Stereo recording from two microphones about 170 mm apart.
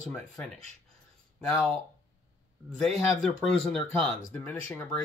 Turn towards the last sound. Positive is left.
turn(degrees=10)  # may be behind; listen again after turning